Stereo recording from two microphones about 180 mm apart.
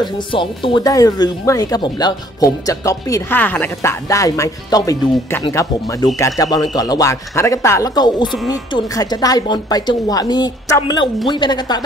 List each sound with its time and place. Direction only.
0.0 s speech: 30° left (ahead or behind)